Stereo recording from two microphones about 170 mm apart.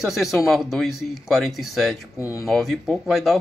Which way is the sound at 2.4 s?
Centre (ahead or behind).